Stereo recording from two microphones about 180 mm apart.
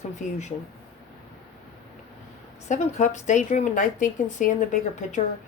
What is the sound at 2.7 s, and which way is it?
Speech, 40° left (ahead or behind).